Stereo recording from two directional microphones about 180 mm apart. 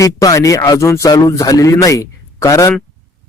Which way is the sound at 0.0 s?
20° left (ahead or behind).